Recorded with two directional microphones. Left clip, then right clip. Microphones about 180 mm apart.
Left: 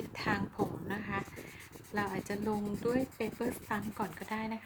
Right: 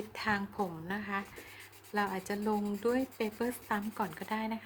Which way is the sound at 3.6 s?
10° right (ahead or behind).